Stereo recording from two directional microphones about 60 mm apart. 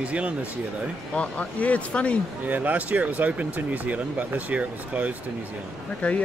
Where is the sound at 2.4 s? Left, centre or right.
Right.